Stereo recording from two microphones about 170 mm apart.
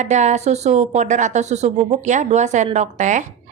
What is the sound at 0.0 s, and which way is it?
A woman's voice, 45° right (ahead or behind).